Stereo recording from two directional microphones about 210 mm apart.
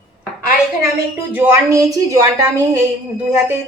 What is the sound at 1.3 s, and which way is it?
A woman's voice, 10° right (ahead or behind).